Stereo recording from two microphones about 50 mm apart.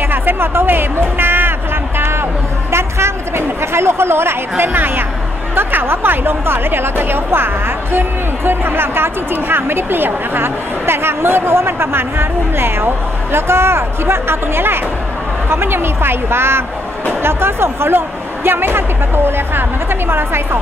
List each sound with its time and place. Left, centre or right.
0.1 s music: right
2.0 s a sound: right
5.5 s speech: right